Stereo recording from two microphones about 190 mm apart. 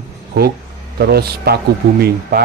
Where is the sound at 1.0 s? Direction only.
55° right (ahead or behind).